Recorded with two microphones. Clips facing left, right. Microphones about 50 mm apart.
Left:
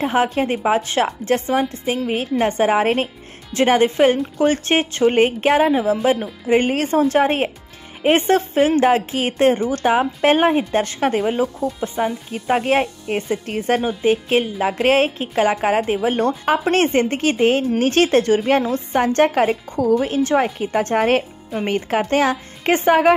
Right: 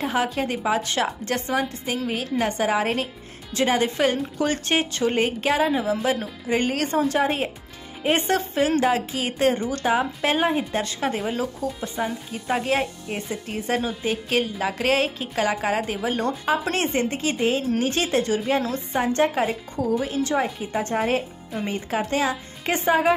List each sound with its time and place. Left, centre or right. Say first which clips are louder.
0.0 s a woman's voice: left 6 dB; left
6.1 s speech: left 4 dB; centre
6.5 s a woman's voice: left 6 dB; left
20.7 s a woman's voice: left 6 dB; left